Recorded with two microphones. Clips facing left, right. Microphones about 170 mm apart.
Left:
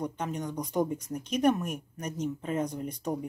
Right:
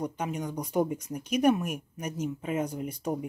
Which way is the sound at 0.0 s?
10° right (ahead or behind).